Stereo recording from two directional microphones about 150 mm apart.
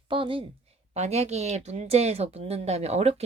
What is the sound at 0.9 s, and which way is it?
Speech, 45° right (ahead or behind).